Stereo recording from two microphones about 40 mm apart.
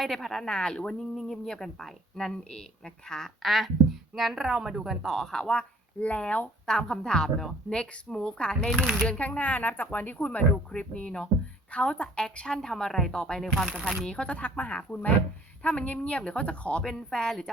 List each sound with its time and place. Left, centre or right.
0.0 s a woman's voice: centre
0.5 s speech: left
0.9 s speech: centre
1.3 s a woman's voice: centre
2.3 s a woman's voice: centre
3.4 s a woman's voice: centre
5.0 s a woman's voice: centre
6.0 s a woman's voice: left
6.7 s a woman's voice: centre
9.0 s speech: left
10.7 s a woman's voice: left
16.8 s a woman's voice: centre